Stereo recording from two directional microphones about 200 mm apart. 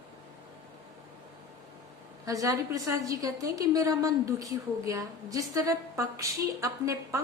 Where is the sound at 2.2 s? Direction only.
15° right (ahead or behind).